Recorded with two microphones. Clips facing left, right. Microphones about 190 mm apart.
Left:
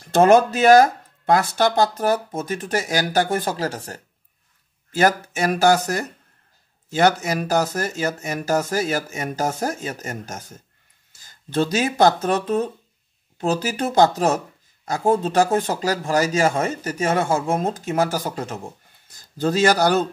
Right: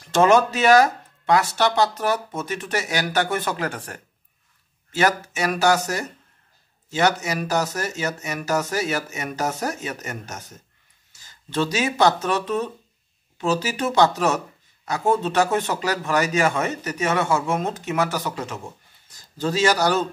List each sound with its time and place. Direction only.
0.0 s speech: 50° left (ahead or behind); by 4.0 s 35° left (ahead or behind)
4.9 s speech: 45° left (ahead or behind)
8.8 s a man's voice: 35° left (ahead or behind)
9.4 s speech: 45° left (ahead or behind)
11.2 s speech: 45° left (ahead or behind)
12.4 s a man's voice: 35° left (ahead or behind)
13.5 s a man's voice: 55° left (ahead or behind)
17.5 s a man's voice: 30° left (ahead or behind)
18.0 s speech: 45° left (ahead or behind)